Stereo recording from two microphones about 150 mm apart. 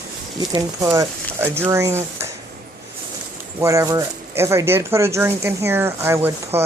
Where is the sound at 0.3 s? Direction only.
25° right (ahead or behind).